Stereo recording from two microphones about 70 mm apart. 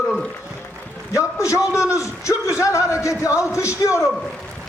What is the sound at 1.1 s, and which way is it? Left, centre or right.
A man's voice, left.